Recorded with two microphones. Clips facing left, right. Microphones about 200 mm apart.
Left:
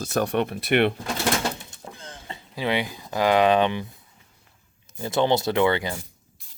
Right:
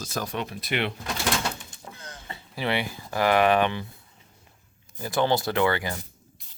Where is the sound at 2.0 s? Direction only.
30° left (ahead or behind).